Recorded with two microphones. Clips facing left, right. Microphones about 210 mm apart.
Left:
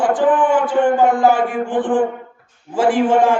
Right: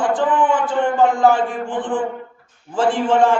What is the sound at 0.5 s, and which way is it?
A man's voice, 15° left (ahead or behind).